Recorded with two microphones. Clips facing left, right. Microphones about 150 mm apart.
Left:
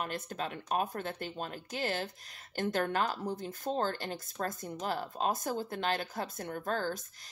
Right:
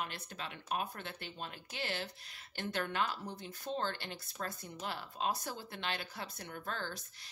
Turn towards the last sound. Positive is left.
turn(degrees=45)  # may be behind; listen again after turning